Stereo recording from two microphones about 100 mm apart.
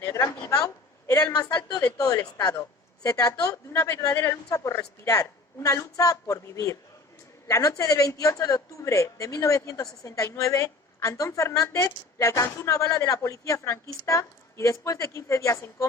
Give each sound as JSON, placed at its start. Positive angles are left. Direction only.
{"t": 0.0, "sound": "a sound", "side_deg": 30}
{"t": 1.3, "sound": "a woman's voice", "side_deg": 45}
{"t": 4.1, "sound": "a woman's voice", "side_deg": 20}
{"t": 4.4, "sound": "a woman's voice", "side_deg": 35}